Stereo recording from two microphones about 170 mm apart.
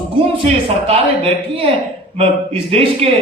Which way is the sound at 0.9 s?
35° right (ahead or behind).